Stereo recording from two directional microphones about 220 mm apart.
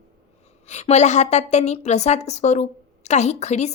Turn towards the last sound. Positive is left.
turn(degrees=30)  # may be behind; listen again after turning